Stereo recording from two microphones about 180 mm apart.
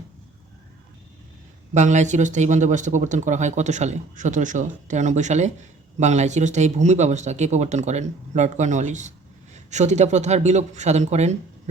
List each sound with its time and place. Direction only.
1.7 s speech: 40° right (ahead or behind)